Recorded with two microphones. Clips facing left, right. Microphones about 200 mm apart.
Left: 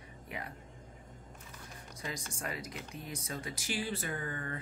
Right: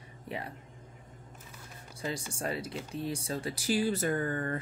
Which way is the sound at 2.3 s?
30° right (ahead or behind).